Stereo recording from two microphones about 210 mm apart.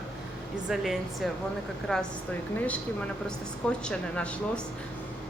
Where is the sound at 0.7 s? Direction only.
Centre (ahead or behind).